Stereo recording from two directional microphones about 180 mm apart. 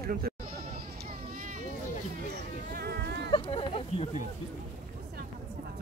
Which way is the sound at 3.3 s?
30° left (ahead or behind).